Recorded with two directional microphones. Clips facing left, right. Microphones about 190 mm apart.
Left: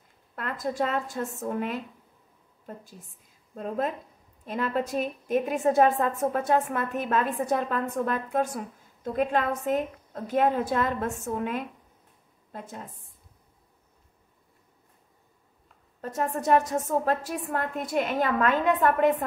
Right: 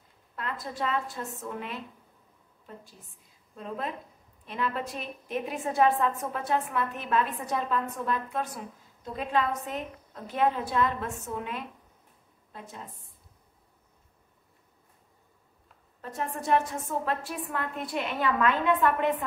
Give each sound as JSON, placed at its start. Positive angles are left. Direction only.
{"t": 0.4, "sound": "a woman's voice", "side_deg": 45}
{"t": 16.0, "sound": "a woman's voice", "side_deg": 45}